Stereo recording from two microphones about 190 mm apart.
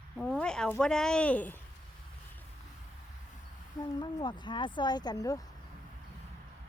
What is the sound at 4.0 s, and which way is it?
Speech, 25° left (ahead or behind).